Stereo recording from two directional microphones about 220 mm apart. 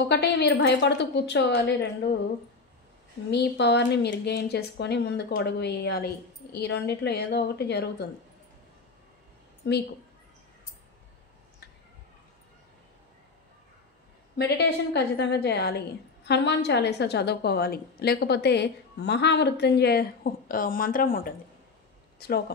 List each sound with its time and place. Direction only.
0.1 s a woman's voice: 50° left (ahead or behind)
3.3 s a woman's voice: 50° left (ahead or behind)
9.6 s a woman's voice: 50° left (ahead or behind)
14.6 s a woman's voice: 50° left (ahead or behind)